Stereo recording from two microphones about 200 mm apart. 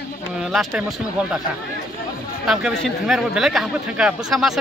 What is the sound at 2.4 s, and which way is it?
Speech, centre (ahead or behind).